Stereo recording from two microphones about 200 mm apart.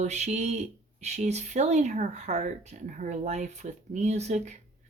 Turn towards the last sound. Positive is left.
turn(degrees=-35)  # may be behind; listen again after turning